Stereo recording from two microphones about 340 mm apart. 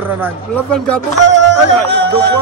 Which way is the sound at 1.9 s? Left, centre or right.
Right.